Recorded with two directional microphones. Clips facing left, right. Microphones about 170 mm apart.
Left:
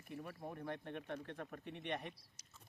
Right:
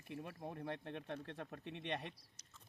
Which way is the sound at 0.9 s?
25° right (ahead or behind).